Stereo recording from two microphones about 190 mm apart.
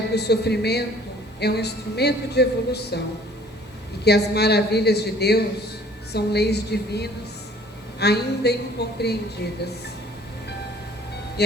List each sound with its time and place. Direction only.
0.1 s a woman's voice: 60° left (ahead or behind)
4.0 s a woman's voice: 60° left (ahead or behind)
11.4 s speech: 60° left (ahead or behind)